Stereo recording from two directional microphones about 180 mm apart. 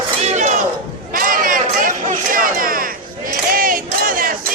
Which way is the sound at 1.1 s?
50° right (ahead or behind).